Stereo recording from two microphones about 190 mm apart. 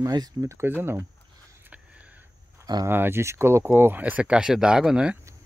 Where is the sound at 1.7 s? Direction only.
5° right (ahead or behind).